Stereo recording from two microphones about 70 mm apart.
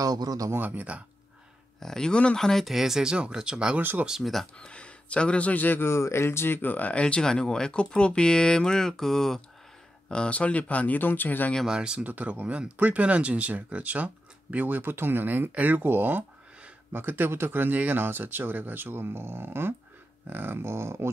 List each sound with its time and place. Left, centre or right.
0.0 s speech: right
0.5 s speech: right
1.8 s speech: centre
4.2 s speech: centre
4.6 s speech: centre
11.6 s speech: centre
12.0 s speech: right